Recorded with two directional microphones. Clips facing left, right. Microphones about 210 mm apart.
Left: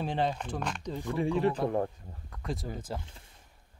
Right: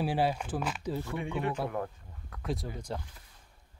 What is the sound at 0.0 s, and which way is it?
Speech, 5° right (ahead or behind).